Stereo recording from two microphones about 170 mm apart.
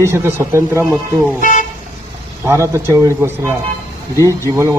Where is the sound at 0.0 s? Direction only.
15° right (ahead or behind).